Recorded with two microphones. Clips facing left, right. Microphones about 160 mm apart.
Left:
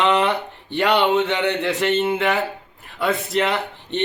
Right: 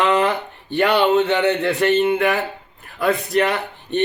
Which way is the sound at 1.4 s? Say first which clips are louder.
Right 3 dB; centre (ahead or behind).